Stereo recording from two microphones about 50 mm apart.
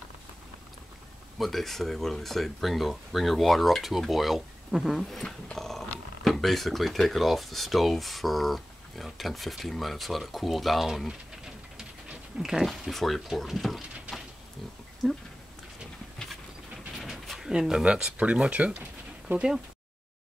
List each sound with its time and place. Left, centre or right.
1.4 s speech: centre
5.2 s speech: centre
11.7 s dog: centre
12.6 s speech: centre
17.0 s pigeon: centre
18.1 s speech: right